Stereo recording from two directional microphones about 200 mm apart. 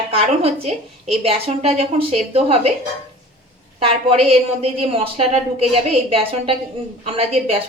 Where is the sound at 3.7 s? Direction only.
30° right (ahead or behind).